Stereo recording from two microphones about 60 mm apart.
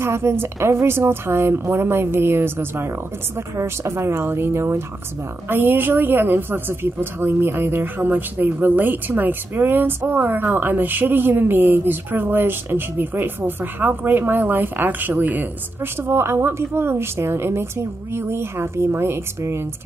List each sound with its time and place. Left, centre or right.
0.0 s a woman's voice: right
16.0 s a woman's voice: right